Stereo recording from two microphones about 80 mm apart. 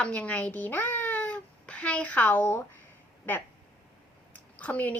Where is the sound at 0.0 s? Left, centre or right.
Centre.